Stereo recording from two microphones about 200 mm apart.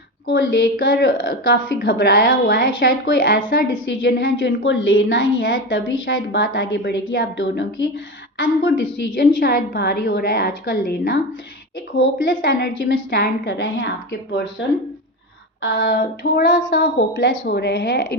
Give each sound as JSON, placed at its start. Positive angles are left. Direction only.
{"t": 0.3, "sound": "a woman's voice", "side_deg": 55}
{"t": 9.1, "sound": "a woman's voice", "side_deg": 45}
{"t": 12.2, "sound": "speech", "side_deg": 45}
{"t": 15.6, "sound": "speech", "side_deg": 55}